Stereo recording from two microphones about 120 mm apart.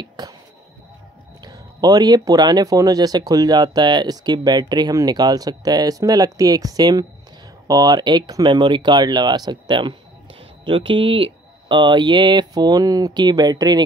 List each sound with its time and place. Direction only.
0.2 s finger snapping: 35° right (ahead or behind)
1.4 s speech: 35° right (ahead or behind)